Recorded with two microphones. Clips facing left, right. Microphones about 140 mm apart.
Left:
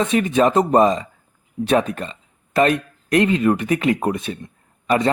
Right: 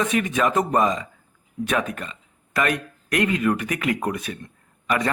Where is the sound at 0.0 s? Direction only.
30° left (ahead or behind).